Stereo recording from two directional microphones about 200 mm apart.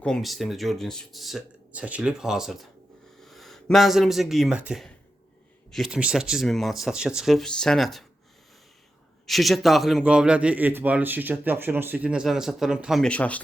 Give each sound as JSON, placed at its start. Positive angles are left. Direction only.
{"t": 0.0, "sound": "a man's voice", "side_deg": 0}
{"t": 9.2, "sound": "a man's voice", "side_deg": 0}